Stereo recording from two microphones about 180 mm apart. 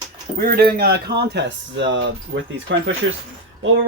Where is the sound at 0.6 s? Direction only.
55° right (ahead or behind); by 2.0 s 75° right (ahead or behind).